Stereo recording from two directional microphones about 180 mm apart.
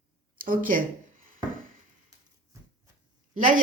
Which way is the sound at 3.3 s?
50° right (ahead or behind).